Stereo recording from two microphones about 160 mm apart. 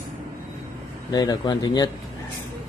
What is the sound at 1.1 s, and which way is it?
Speech, 25° left (ahead or behind).